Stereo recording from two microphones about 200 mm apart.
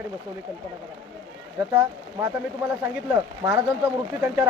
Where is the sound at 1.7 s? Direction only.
15° right (ahead or behind).